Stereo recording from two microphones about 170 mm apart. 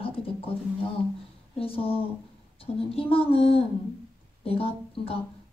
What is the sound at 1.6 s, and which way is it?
Speech, 35° left (ahead or behind).